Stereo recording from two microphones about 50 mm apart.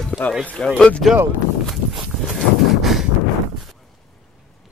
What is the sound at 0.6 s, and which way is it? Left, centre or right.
Speech, centre.